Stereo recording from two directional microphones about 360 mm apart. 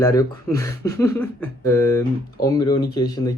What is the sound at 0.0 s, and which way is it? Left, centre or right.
Speech, centre.